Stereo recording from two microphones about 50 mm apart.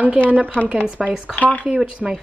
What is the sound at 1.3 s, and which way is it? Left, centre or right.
Speech, left.